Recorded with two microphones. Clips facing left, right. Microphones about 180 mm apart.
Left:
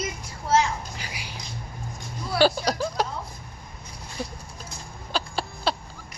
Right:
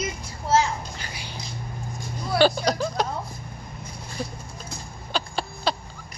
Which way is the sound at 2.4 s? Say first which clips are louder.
Right 1 dB; 5° left (ahead or behind).